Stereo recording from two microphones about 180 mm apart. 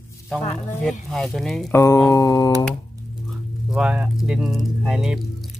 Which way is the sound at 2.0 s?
20° left (ahead or behind).